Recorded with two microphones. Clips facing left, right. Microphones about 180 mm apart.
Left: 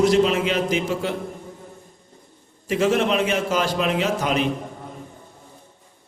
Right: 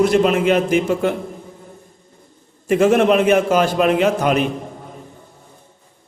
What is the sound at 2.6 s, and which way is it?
A man's voice, 55° right (ahead or behind).